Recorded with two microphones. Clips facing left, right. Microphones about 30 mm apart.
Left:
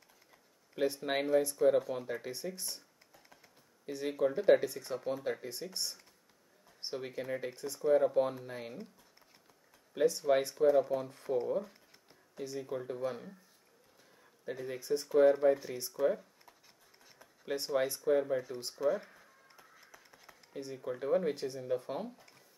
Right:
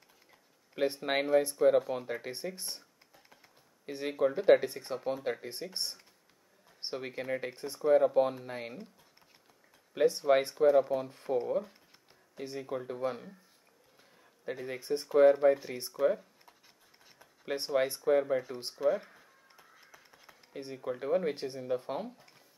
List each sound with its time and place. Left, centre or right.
0.7 s speech: right
3.8 s speech: right
5.5 s speech: right
9.9 s speech: right
14.4 s speech: centre
16.0 s a sound: centre
17.5 s speech: centre
18.8 s a sound: centre
20.7 s speech: centre